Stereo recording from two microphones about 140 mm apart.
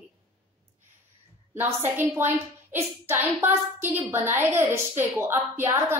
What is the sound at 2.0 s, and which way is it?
A child's voice, 15° right (ahead or behind).